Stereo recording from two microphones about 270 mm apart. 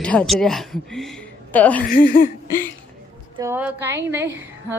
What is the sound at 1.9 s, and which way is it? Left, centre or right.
Speech, left.